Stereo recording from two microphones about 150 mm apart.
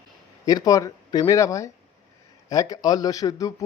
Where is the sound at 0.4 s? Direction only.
25° left (ahead or behind).